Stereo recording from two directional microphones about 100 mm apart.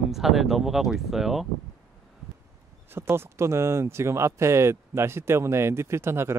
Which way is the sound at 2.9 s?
25° right (ahead or behind).